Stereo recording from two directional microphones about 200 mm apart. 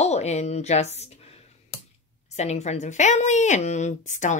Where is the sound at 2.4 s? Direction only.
35° left (ahead or behind).